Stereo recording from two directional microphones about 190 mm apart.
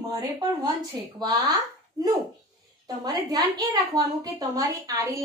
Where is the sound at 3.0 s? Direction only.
20° right (ahead or behind).